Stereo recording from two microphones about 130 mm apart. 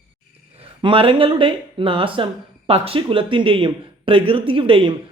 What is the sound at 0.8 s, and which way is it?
A man's voice, 45° right (ahead or behind).